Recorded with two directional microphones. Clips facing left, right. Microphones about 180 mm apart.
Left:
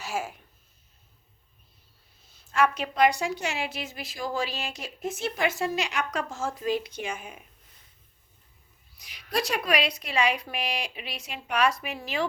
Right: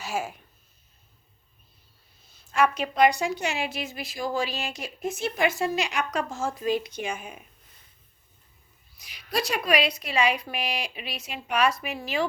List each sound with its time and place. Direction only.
0.0 s speech: 15° right (ahead or behind)
2.6 s a woman's voice: 15° right (ahead or behind)
9.0 s a woman's voice: 5° right (ahead or behind)